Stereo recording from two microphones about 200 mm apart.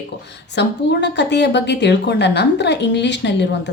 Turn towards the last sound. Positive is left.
turn(degrees=60)  # may be behind; listen again after turning